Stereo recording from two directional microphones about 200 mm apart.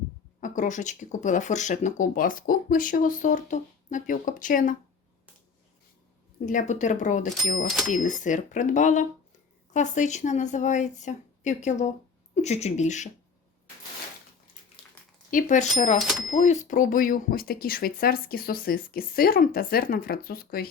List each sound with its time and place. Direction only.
0.3 s speech: 40° left (ahead or behind)
6.4 s speech: 40° left (ahead or behind)
15.3 s speech: 40° left (ahead or behind)